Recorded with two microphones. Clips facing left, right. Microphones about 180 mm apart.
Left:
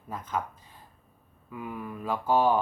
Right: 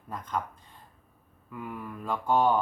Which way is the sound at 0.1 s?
5° left (ahead or behind).